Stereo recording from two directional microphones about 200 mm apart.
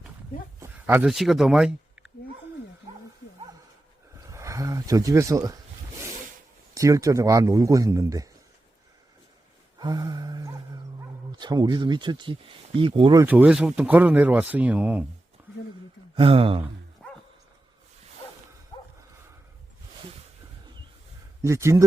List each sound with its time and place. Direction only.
0.9 s speech: 5° right (ahead or behind)
4.3 s wild animals: 15° right (ahead or behind)
6.7 s speech: 15° right (ahead or behind)
9.7 s a sound: 20° right (ahead or behind)
11.3 s speech: 20° right (ahead or behind)
13.2 s speech: 5° right (ahead or behind)
15.4 s a sound: 10° right (ahead or behind)
16.1 s speech: 25° right (ahead or behind)
17.0 s dog: 5° left (ahead or behind)
18.7 s dog: 25° left (ahead or behind)
21.4 s speech: 15° right (ahead or behind)